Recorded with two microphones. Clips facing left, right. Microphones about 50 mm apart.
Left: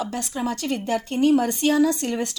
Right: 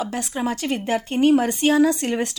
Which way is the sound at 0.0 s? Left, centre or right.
Right.